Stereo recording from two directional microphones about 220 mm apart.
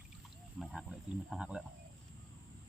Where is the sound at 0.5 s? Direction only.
Centre (ahead or behind).